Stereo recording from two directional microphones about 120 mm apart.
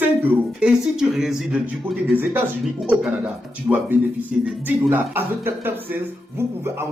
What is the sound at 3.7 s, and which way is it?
Speech, 25° right (ahead or behind).